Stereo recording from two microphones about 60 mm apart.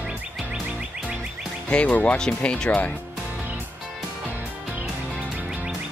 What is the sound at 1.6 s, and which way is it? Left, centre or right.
Speech, left.